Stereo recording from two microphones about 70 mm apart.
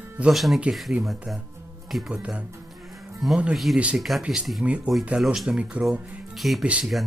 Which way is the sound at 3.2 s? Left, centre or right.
Centre.